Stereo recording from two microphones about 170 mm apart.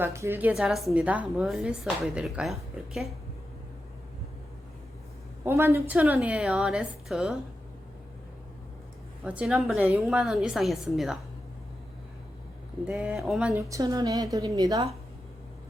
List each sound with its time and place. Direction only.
0.0 s a woman's voice: 15° right (ahead or behind)
5.5 s a woman's voice: 15° right (ahead or behind)
9.2 s a woman's voice: 5° right (ahead or behind)
12.8 s a woman's voice: 5° right (ahead or behind)
13.6 s a woman's voice: 20° right (ahead or behind)